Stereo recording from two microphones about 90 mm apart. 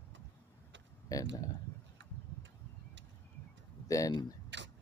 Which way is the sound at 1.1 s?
45° left (ahead or behind).